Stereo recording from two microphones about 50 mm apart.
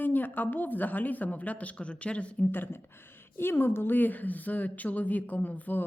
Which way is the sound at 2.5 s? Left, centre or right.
Left.